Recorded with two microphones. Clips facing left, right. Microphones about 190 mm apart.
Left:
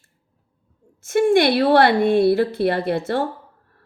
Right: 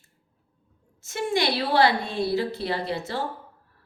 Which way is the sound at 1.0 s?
55° left (ahead or behind).